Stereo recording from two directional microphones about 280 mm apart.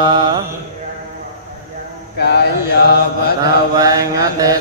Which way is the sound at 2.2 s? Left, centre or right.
Left.